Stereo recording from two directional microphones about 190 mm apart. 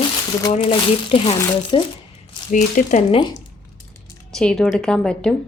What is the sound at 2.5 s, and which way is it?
Speech, 40° left (ahead or behind).